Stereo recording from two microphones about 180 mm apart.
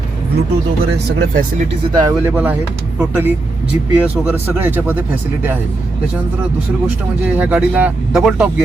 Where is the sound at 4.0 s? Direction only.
10° right (ahead or behind).